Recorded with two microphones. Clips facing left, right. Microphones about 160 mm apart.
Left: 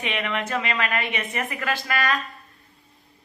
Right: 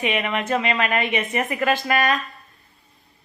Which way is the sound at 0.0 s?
15° right (ahead or behind).